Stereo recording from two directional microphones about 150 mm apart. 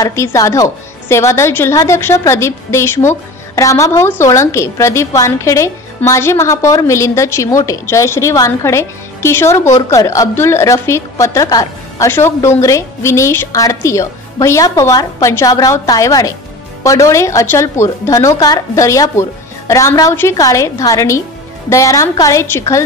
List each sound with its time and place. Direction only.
0.0 s a woman's voice: 20° left (ahead or behind)